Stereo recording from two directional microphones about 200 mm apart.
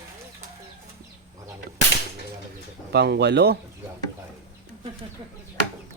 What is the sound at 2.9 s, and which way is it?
Speech, 55° right (ahead or behind).